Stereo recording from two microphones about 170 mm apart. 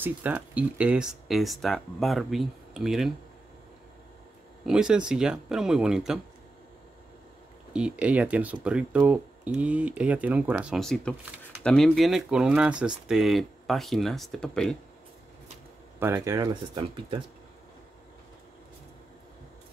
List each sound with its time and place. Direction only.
0.0 s speech: 10° right (ahead or behind)
4.6 s speech: 5° right (ahead or behind)
7.7 s speech: 5° right (ahead or behind)
16.0 s speech: 15° right (ahead or behind)